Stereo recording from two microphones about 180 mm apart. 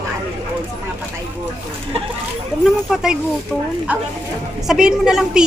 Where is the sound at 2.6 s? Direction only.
Centre (ahead or behind).